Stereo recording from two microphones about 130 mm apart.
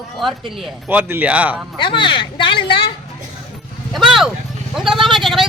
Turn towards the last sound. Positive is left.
turn(degrees=0)  # may be behind; listen again after turning